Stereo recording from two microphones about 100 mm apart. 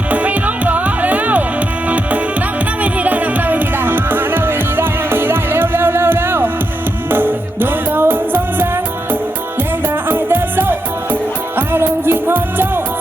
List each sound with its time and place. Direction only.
0.1 s music: 15° right (ahead or behind)
9.8 s music: 20° right (ahead or behind)